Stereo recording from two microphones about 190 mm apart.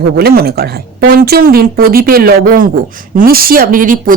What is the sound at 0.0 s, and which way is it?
Speech, 55° right (ahead or behind).